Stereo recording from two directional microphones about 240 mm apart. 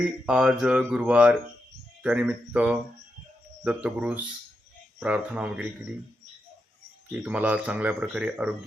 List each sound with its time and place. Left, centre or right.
0.3 s speech: centre
7.1 s speech: centre